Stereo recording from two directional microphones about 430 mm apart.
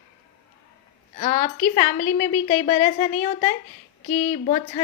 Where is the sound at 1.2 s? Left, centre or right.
Centre.